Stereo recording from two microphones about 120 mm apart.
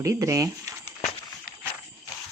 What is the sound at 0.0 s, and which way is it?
Speech, 25° right (ahead or behind).